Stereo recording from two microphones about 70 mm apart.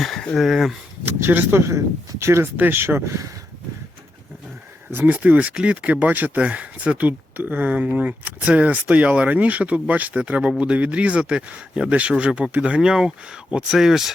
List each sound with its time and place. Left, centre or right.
0.0 s a sound: centre
0.3 s speech: centre
1.0 s speech: right
2.6 s speech: right
4.9 s speech: right; by 14.1 s centre